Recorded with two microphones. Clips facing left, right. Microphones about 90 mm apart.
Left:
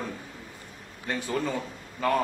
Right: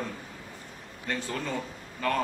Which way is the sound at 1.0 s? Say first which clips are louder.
Left 4 dB; 15° left (ahead or behind).